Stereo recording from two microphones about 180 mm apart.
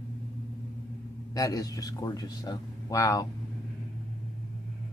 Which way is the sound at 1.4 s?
20° left (ahead or behind).